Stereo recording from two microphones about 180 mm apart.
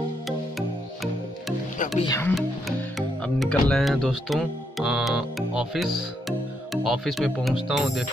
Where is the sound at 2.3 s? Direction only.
Centre (ahead or behind).